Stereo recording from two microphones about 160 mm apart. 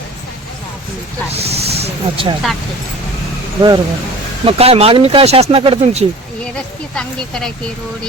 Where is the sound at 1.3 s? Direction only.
40° right (ahead or behind).